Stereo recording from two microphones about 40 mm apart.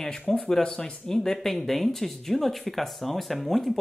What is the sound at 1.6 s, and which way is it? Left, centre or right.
Speech, centre.